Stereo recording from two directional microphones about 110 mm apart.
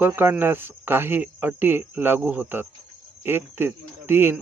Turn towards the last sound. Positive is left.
turn(degrees=-20)  # may be behind; listen again after turning